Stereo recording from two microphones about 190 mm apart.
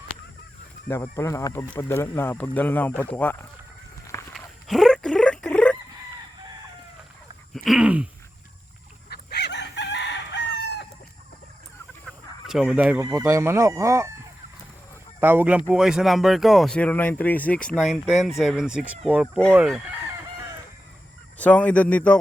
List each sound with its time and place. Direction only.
1.1 s speech: 15° left (ahead or behind)
4.4 s a sound: centre (ahead or behind)
7.5 s a sound: centre (ahead or behind)
9.0 s chicken: 60° left (ahead or behind)
12.0 s speech: centre (ahead or behind)
15.2 s speech: 10° right (ahead or behind)
21.3 s speech: 5° left (ahead or behind)